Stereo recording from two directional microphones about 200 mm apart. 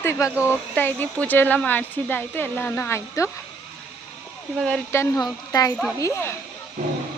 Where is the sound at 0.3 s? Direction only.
5° right (ahead or behind).